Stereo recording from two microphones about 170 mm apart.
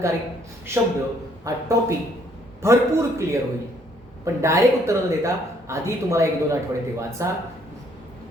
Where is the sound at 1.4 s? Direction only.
20° right (ahead or behind).